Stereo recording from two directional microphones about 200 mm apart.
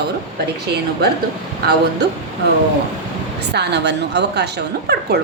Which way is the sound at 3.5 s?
55° right (ahead or behind).